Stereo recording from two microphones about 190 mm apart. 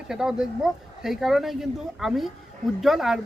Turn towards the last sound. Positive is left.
turn(degrees=0)  # may be behind; listen again after turning